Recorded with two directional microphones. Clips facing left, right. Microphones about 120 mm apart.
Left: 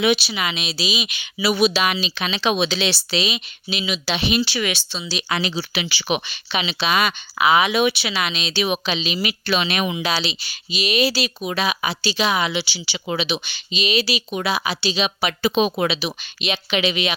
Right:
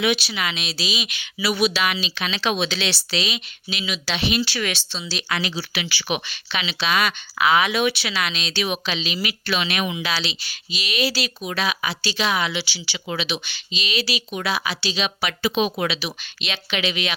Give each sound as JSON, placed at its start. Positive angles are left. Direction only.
{"t": 0.3, "sound": "speech", "side_deg": 10}
{"t": 1.4, "sound": "speech", "side_deg": 25}
{"t": 4.6, "sound": "speech", "side_deg": 5}
{"t": 5.3, "sound": "speech", "side_deg": 25}
{"t": 7.7, "sound": "speech", "side_deg": 20}
{"t": 16.4, "sound": "speech", "side_deg": 15}